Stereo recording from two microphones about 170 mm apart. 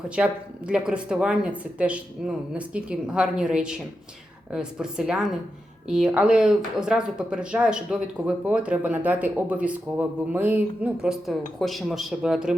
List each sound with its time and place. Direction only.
0.7 s speech: 5° right (ahead or behind)